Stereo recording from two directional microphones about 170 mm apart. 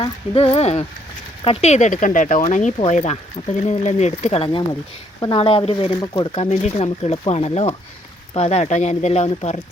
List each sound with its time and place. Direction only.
0.0 s speech: 35° left (ahead or behind)
6.0 s speech: 20° left (ahead or behind)
6.3 s speech: 40° left (ahead or behind)